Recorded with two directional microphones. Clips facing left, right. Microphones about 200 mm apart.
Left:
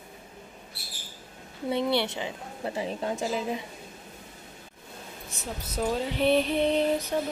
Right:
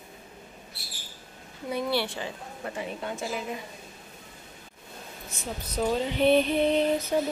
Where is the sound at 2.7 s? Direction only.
35° left (ahead or behind).